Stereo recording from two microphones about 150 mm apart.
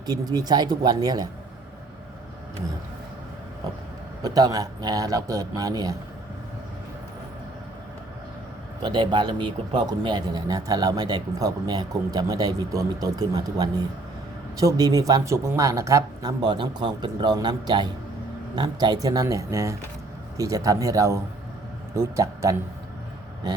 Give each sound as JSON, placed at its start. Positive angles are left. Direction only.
{"t": 0.0, "sound": "speech", "side_deg": -25}
{"t": 4.2, "sound": "speech", "side_deg": -25}
{"t": 8.8, "sound": "speech", "side_deg": -30}